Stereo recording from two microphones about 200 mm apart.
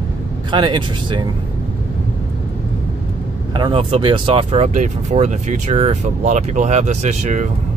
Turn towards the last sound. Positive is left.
turn(degrees=-35)  # may be behind; listen again after turning